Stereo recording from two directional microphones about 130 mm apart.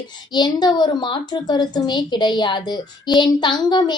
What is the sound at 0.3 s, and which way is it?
A woman's voice, 35° left (ahead or behind).